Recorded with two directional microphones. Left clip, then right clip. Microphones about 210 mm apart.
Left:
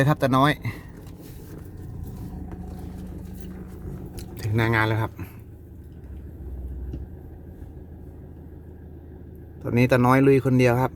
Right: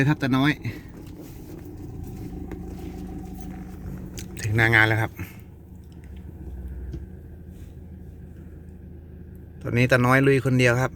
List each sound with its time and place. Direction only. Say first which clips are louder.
0.0 s speech: left 3 dB; 20° left (ahead or behind)
4.1 s speech: right 2 dB; 5° left (ahead or behind)
9.6 s speech: even; 10° left (ahead or behind)